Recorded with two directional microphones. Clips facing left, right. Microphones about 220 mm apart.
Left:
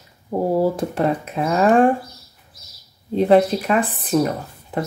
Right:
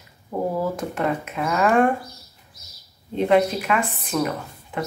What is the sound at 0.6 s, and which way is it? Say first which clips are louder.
Speech: left 6 dB; 30° left (ahead or behind).